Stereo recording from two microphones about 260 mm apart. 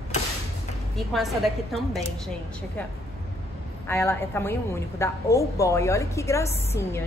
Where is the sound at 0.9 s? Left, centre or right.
Centre.